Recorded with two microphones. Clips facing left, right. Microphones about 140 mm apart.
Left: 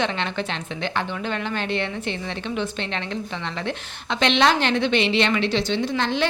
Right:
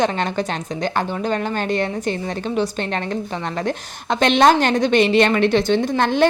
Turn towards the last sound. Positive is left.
turn(degrees=-50)  # may be behind; listen again after turning